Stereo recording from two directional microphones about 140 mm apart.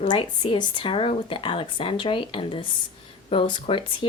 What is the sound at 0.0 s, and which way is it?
Speech, 30° left (ahead or behind).